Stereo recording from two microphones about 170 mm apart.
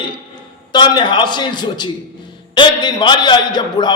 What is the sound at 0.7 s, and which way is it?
A man's voice, 25° left (ahead or behind).